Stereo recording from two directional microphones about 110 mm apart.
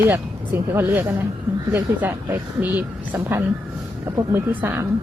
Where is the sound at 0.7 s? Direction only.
20° right (ahead or behind).